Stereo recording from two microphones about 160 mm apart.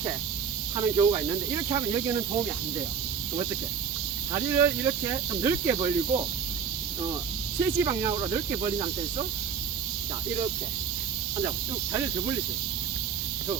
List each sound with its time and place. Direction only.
0.8 s speech: 25° right (ahead or behind)
4.3 s speech: 20° right (ahead or behind)
7.8 s speech: 25° right (ahead or behind)
11.9 s speech: 20° right (ahead or behind)